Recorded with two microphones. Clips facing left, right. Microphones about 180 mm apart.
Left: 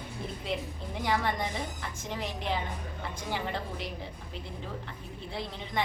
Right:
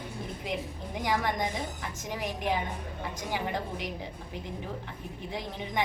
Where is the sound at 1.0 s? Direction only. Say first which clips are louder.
Right 1 dB; 15° right (ahead or behind).